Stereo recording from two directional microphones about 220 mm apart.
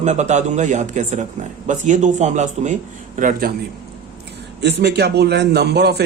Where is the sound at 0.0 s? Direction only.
30° right (ahead or behind).